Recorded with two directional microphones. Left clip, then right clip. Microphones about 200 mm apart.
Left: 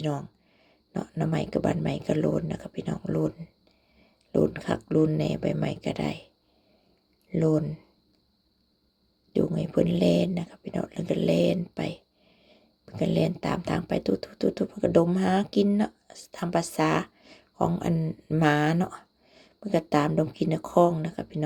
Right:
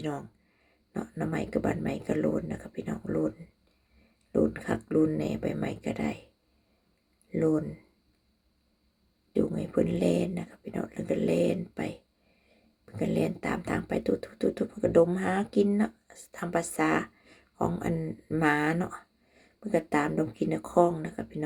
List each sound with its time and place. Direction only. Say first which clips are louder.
0.9 s speech: left 3 dB; 30° left (ahead or behind)
2.6 s speech: left 2 dB; 25° left (ahead or behind)
9.6 s speech: left 3 dB; 35° left (ahead or behind)
21.1 s speech: left 3 dB; 35° left (ahead or behind)